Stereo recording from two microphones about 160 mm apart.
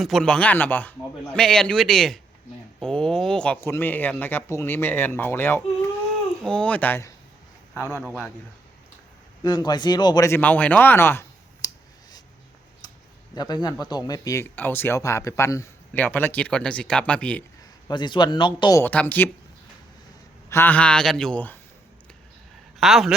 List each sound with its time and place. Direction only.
0.0 s a man's voice: 5° left (ahead or behind)
8.0 s a man's voice: 5° right (ahead or behind)
9.4 s speech: 25° left (ahead or behind)
13.3 s speech: 25° left (ahead or behind); by 17.4 s 5° left (ahead or behind)
17.8 s speech: 30° left (ahead or behind)
18.8 s speech: 10° left (ahead or behind)
20.5 s speech: 10° left (ahead or behind)
22.8 s a man's voice: centre (ahead or behind)